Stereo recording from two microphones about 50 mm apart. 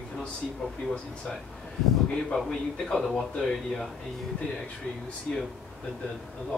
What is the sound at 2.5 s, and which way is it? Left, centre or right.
Speech, centre.